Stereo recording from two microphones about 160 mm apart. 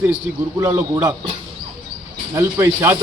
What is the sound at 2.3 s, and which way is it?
Speech, 15° right (ahead or behind).